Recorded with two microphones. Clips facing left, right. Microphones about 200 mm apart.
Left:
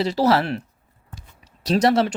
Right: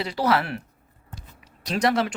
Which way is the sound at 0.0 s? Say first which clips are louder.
Left 5 dB; 30° left (ahead or behind).